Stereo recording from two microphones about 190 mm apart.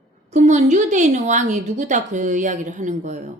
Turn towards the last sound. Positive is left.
turn(degrees=-40)  # may be behind; listen again after turning